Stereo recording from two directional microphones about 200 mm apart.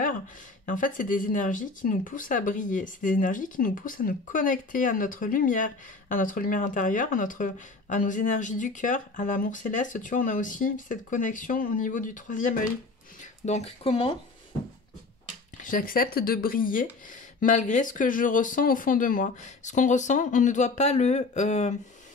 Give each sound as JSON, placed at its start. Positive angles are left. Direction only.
{"t": 0.7, "sound": "speech", "side_deg": 40}
{"t": 15.6, "sound": "speech", "side_deg": 45}